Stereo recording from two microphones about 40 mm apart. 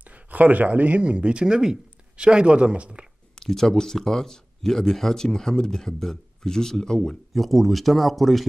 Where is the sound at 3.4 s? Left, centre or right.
Centre.